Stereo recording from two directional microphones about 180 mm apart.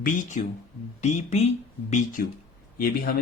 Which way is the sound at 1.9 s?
50° left (ahead or behind).